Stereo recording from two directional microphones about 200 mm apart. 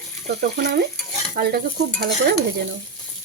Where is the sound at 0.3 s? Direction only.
50° right (ahead or behind).